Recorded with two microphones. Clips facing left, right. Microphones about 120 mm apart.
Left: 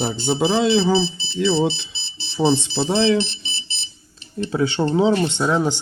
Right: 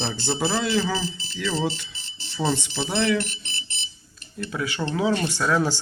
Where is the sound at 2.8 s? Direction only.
25° left (ahead or behind).